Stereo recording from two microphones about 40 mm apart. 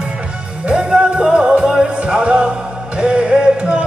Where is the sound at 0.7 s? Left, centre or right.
Right.